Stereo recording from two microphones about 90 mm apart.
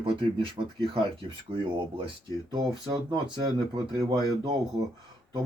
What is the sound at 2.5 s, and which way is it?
Speech, 55° right (ahead or behind).